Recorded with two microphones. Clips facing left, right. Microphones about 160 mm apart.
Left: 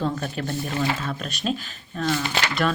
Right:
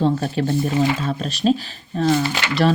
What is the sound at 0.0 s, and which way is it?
Speech, 30° right (ahead or behind).